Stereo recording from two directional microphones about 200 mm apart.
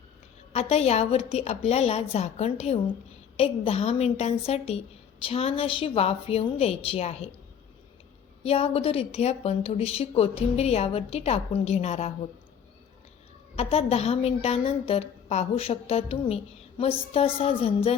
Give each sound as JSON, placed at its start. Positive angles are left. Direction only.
{"t": 0.5, "sound": "a woman's voice", "side_deg": 30}
{"t": 8.4, "sound": "a woman's voice", "side_deg": 30}
{"t": 13.6, "sound": "a woman's voice", "side_deg": 30}